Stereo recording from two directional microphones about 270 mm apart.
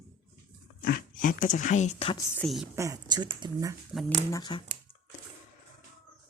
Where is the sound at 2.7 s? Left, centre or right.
Centre.